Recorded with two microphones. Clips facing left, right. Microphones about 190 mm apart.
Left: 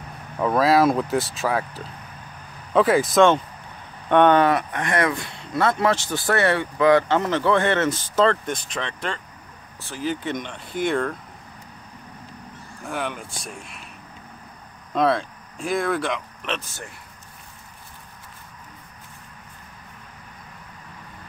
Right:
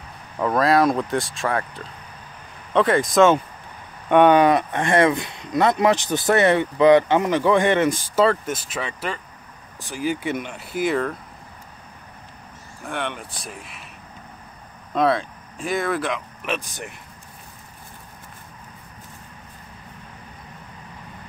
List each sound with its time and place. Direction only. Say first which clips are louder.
0.4 s speech: even; centre (ahead or behind)
4.1 s speech: right 2 dB; 10° right (ahead or behind)
12.8 s speech: even; centre (ahead or behind)
15.0 s speech: right 1 dB; centre (ahead or behind)
16.5 s speech: right 3 dB; 15° right (ahead or behind)